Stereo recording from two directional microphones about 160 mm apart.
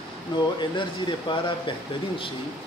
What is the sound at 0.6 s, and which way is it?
A man's voice, 30° left (ahead or behind).